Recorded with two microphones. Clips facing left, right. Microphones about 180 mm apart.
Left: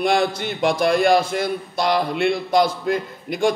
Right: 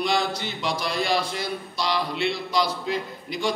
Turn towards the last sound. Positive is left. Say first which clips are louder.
# left 7 dB
turn(degrees=50)  # may be behind; listen again after turning